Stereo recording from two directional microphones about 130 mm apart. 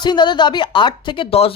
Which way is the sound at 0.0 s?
35° left (ahead or behind).